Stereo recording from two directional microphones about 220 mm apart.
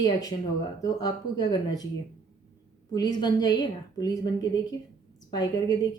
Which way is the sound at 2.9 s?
20° left (ahead or behind).